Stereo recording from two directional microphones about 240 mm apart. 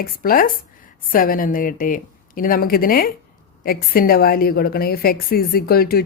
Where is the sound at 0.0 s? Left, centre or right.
Left.